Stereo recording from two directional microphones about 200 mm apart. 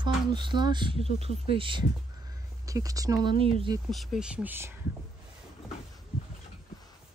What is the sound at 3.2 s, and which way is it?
Speech, 30° right (ahead or behind).